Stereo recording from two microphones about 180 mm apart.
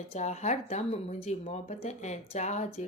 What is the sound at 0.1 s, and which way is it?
Speech, 40° left (ahead or behind).